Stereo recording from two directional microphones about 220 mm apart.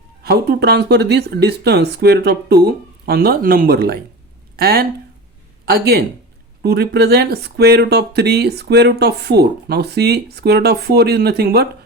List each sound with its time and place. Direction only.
0.2 s speech: 45° right (ahead or behind)